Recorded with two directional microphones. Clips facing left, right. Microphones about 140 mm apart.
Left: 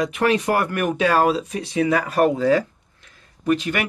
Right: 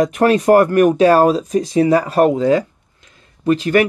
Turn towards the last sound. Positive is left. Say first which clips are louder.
# right 7 dB
turn(degrees=-40)  # may be behind; listen again after turning